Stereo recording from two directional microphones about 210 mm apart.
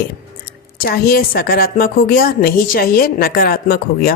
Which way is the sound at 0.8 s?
45° left (ahead or behind).